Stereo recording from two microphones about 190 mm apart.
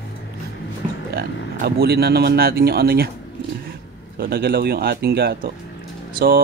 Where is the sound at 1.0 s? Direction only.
55° right (ahead or behind).